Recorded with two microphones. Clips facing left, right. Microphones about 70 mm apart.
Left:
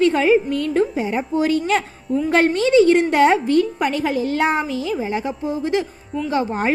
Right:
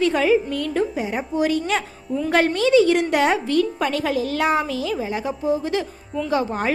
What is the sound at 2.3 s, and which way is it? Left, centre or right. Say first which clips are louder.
A woman's voice: left 1 dB; left.